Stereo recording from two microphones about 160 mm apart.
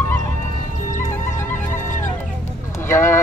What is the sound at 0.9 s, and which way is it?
Music, 50° left (ahead or behind).